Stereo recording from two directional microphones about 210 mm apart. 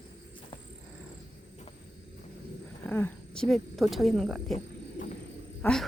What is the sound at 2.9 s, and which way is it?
Speech, 10° left (ahead or behind).